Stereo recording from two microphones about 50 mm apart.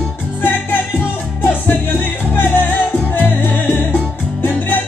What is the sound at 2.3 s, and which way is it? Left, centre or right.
Music, left.